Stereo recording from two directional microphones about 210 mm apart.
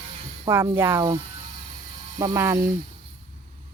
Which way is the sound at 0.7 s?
10° right (ahead or behind).